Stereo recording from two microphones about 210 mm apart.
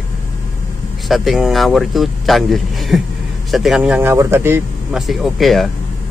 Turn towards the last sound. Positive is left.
turn(degrees=0)  # may be behind; listen again after turning